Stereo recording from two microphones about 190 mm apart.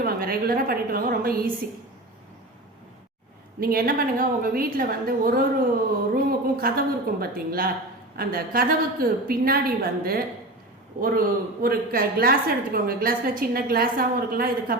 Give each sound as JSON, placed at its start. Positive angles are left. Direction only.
{"t": 0.0, "sound": "a woman's voice", "side_deg": -50}
{"t": 3.6, "sound": "a woman's voice", "side_deg": -50}